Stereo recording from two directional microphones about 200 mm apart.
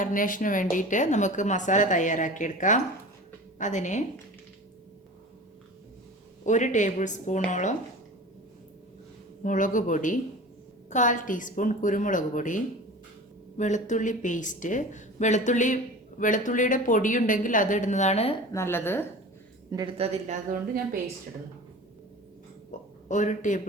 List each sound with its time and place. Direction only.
0.0 s a woman's voice: 40° left (ahead or behind)
6.4 s a woman's voice: 35° left (ahead or behind)
9.4 s a woman's voice: 40° left (ahead or behind)
18.5 s a woman's voice: 10° left (ahead or behind)
19.7 s speech: 25° right (ahead or behind)
20.2 s a woman's voice: 40° right (ahead or behind)
22.7 s a sound: 40° left (ahead or behind)
23.0 s a woman's voice: 40° left (ahead or behind)